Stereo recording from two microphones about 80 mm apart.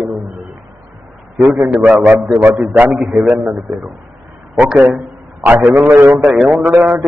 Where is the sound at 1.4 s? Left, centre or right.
Right.